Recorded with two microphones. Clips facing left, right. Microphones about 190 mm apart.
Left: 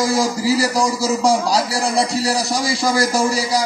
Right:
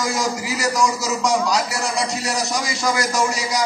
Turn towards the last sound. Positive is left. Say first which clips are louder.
# left 4 dB
turn(degrees=35)  # may be behind; listen again after turning